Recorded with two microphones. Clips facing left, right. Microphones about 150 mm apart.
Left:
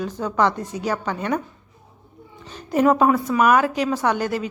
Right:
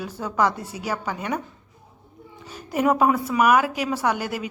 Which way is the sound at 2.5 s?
10° right (ahead or behind).